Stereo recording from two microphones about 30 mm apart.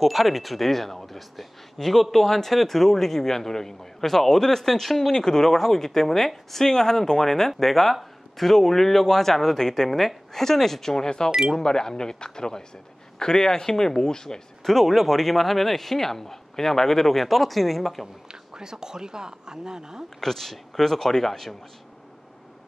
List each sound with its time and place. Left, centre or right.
0.0 s speech: centre
5.1 s speech: centre
9.9 s a woman's voice: centre
14.7 s speech: centre
18.3 s speech: right
20.2 s speech: centre